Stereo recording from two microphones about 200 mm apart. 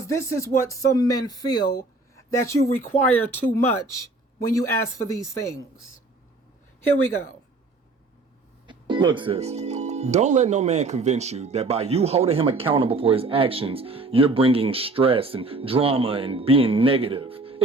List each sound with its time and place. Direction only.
0.0 s speech: 15° left (ahead or behind)
8.6 s speech: 25° right (ahead or behind)